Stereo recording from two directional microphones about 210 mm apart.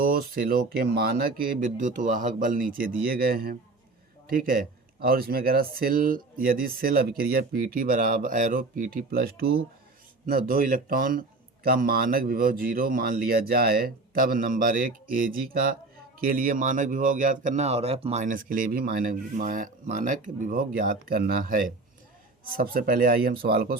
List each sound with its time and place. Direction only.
0.0 s a man's voice: 45° right (ahead or behind)